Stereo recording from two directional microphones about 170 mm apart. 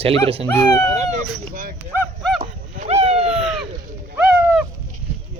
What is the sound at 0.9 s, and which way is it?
Speech, 50° right (ahead or behind).